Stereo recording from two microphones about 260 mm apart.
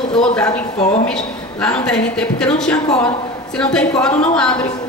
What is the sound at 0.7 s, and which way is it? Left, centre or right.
Speech, left.